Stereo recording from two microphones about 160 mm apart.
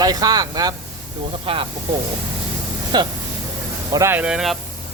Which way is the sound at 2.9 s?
25° right (ahead or behind).